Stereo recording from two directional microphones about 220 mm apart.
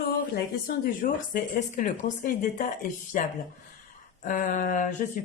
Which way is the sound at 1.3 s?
40° left (ahead or behind).